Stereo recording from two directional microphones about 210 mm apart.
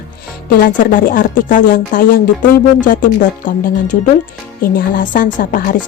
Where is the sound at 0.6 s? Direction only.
40° left (ahead or behind).